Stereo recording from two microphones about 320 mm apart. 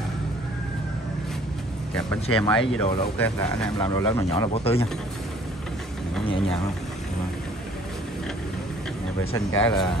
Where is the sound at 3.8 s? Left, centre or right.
Centre.